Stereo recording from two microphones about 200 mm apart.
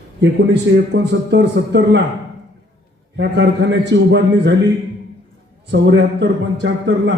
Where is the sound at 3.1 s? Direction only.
60° right (ahead or behind).